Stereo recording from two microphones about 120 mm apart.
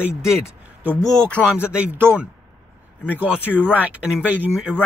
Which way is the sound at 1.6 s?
10° right (ahead or behind).